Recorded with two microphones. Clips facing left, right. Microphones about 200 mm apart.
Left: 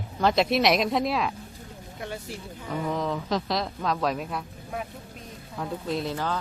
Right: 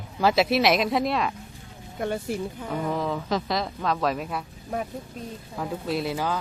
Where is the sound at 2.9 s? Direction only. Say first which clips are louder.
Right 1 dB; centre (ahead or behind).